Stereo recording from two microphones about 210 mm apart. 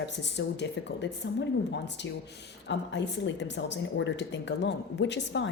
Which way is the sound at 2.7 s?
55° left (ahead or behind).